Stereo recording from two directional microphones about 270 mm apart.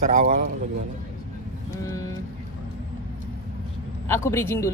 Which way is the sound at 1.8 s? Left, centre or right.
Centre.